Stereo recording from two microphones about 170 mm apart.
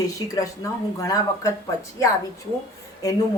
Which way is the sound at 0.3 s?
20° left (ahead or behind).